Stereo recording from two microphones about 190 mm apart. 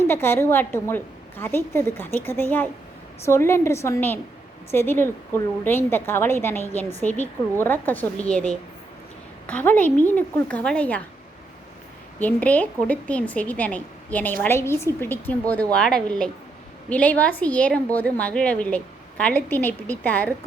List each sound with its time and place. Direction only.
0.1 s a woman's voice: 10° left (ahead or behind)
9.5 s a woman's voice: 10° left (ahead or behind)
12.2 s a woman's voice: 10° left (ahead or behind)